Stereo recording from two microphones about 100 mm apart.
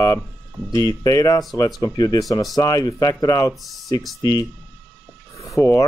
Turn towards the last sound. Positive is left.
turn(degrees=35)  # may be behind; listen again after turning